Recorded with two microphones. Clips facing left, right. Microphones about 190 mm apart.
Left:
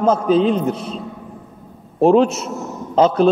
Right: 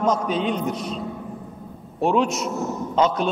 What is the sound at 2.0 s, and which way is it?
A man's voice, 35° left (ahead or behind).